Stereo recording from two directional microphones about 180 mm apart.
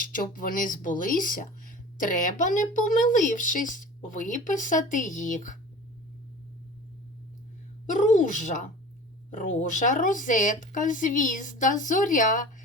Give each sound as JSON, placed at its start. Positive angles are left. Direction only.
{"t": 0.0, "sound": "speech", "side_deg": 50}
{"t": 7.9, "sound": "a sound", "side_deg": 45}
{"t": 9.3, "sound": "speech", "side_deg": 45}